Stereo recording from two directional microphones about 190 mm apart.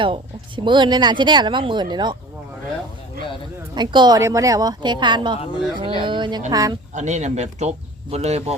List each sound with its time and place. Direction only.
0.0 s speech: 25° right (ahead or behind)
3.8 s speech: 25° right (ahead or behind)
6.9 s speech: 40° right (ahead or behind)